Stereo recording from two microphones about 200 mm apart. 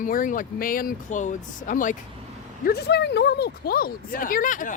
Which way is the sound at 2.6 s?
55° left (ahead or behind).